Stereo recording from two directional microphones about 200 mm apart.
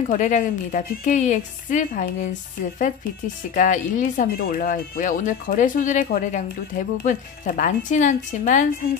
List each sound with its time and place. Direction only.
0.1 s speech: 40° left (ahead or behind)
3.5 s speech: 40° left (ahead or behind)